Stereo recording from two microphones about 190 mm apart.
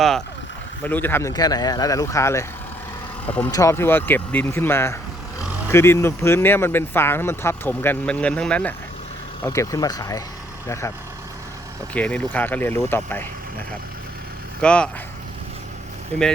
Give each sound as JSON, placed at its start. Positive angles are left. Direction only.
{"t": 0.9, "sound": "speech", "side_deg": 10}
{"t": 11.9, "sound": "speech", "side_deg": 5}
{"t": 14.6, "sound": "speech", "side_deg": 5}